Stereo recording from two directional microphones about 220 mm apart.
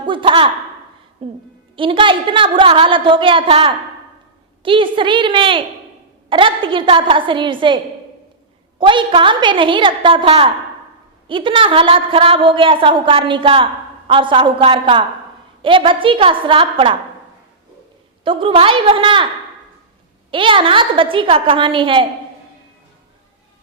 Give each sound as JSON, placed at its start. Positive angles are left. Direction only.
{"t": 0.0, "sound": "a sound", "side_deg": -20}
{"t": 1.2, "sound": "a woman's voice", "side_deg": -25}
{"t": 8.8, "sound": "a woman's voice", "side_deg": -25}
{"t": 18.3, "sound": "a woman's voice", "side_deg": -25}
{"t": 20.3, "sound": "a woman's voice", "side_deg": -20}